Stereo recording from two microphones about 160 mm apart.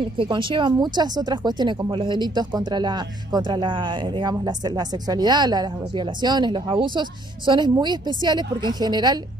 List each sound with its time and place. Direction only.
0.2 s speech: 30° right (ahead or behind)